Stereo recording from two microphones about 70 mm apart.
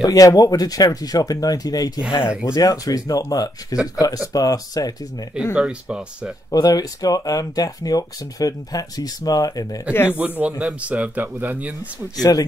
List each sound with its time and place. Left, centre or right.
0.0 s speech: left
3.7 s speech: centre
4.0 s speech: left
5.5 s speech: centre
6.5 s speech: left
10.1 s a man's voice: right
12.2 s speech: left